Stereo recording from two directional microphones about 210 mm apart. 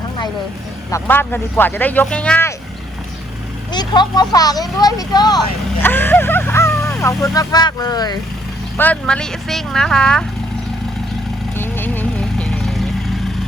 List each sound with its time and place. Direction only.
0.9 s speech: 10° left (ahead or behind)
3.7 s speech: 20° left (ahead or behind)
8.8 s speech: 5° left (ahead or behind)
11.5 s vehicle: 10° left (ahead or behind)